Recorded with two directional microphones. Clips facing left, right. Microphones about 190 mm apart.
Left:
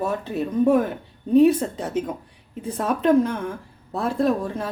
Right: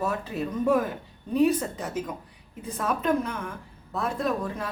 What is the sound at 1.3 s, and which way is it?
A woman's voice, 25° left (ahead or behind).